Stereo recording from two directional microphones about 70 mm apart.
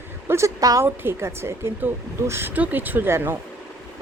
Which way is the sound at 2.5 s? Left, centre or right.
Right.